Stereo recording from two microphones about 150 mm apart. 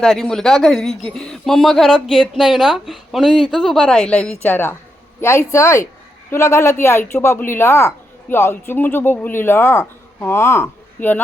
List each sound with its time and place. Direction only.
0.0 s speech: 5° left (ahead or behind)